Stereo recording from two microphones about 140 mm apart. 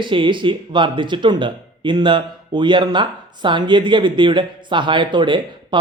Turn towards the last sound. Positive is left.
turn(degrees=-35)  # may be behind; listen again after turning